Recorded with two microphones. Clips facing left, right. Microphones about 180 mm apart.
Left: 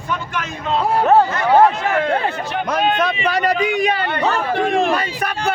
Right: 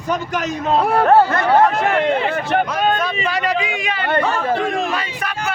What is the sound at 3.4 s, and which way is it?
Speech, 40° left (ahead or behind).